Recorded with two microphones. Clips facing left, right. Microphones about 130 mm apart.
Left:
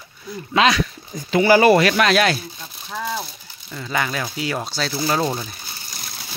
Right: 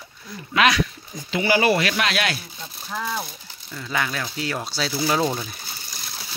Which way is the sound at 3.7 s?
5° left (ahead or behind).